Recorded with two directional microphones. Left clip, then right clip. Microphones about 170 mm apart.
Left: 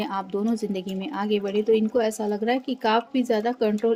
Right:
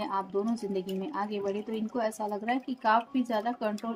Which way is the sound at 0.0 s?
50° left (ahead or behind).